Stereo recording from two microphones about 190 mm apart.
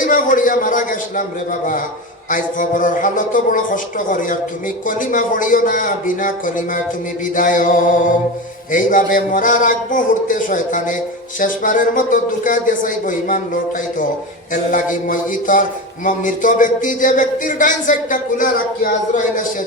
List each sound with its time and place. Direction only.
0.0 s a man's voice: 45° left (ahead or behind)
14.5 s a man's voice: 45° left (ahead or behind)